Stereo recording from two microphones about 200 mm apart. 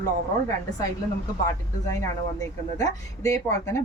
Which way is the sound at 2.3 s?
15° left (ahead or behind).